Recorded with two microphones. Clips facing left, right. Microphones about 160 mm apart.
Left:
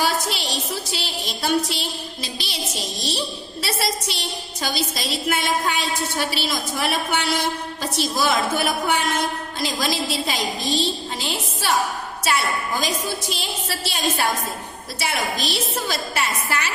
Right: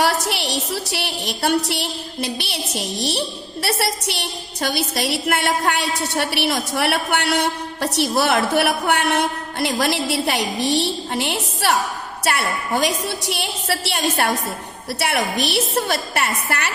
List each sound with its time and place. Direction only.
0.0 s a woman's voice: 65° right (ahead or behind)